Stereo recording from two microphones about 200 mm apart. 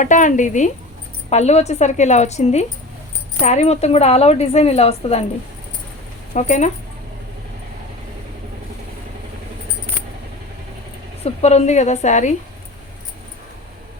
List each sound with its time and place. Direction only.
0.0 s a woman's voice: 40° left (ahead or behind)
6.3 s a woman's voice: 35° left (ahead or behind)
11.2 s a woman's voice: 30° left (ahead or behind)